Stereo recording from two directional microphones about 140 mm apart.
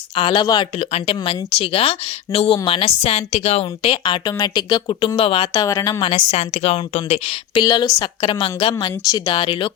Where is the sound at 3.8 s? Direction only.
35° left (ahead or behind).